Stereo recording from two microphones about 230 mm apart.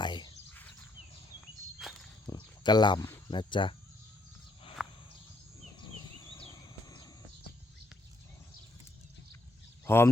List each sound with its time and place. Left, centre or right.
0.0 s cricket: centre
1.8 s walk: centre
2.2 s speech: centre
4.8 s a sound: centre
5.8 s a sound: centre
9.8 s speech: centre